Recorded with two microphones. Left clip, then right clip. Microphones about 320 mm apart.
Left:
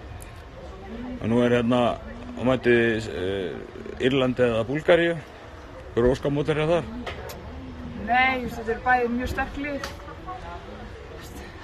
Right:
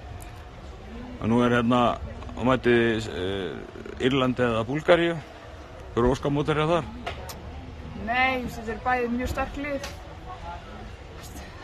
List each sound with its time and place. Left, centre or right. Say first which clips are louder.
1.2 s a man's voice: left 1 dB; centre
8.1 s a sound: left 3 dB; centre
8.9 s a man's voice: left 3 dB; centre